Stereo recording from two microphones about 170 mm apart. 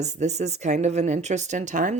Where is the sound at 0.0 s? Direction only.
40° right (ahead or behind).